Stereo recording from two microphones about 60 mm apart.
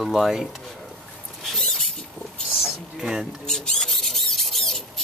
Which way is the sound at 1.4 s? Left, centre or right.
Centre.